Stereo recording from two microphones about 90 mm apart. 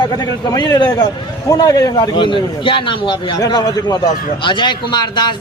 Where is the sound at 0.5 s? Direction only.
50° left (ahead or behind).